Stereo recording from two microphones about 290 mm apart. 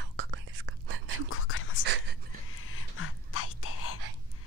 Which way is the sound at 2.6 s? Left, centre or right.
Left.